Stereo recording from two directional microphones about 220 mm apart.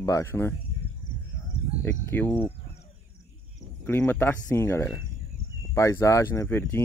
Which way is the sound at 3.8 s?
10° left (ahead or behind).